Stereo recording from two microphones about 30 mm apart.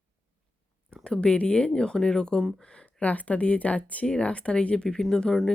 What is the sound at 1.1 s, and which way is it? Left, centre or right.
Speech, left.